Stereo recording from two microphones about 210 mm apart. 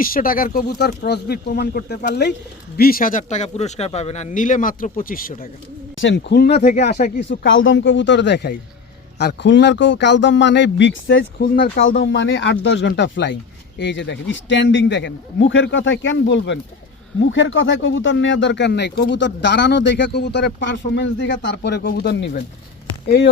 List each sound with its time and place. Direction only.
0.0 s speech: 45° left (ahead or behind)
6.0 s speech: 60° left (ahead or behind)
7.3 s speech: 65° left (ahead or behind)
11.4 s speech: 45° left (ahead or behind)
11.8 s speech: 60° left (ahead or behind)